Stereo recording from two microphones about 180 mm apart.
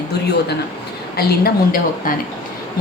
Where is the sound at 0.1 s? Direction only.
65° left (ahead or behind).